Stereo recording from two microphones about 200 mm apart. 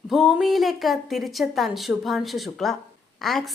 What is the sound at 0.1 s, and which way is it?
A woman's voice, centre (ahead or behind).